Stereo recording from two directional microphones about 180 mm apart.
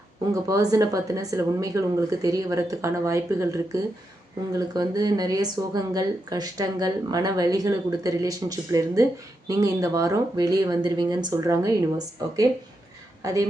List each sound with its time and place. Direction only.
0.4 s speech: 20° right (ahead or behind)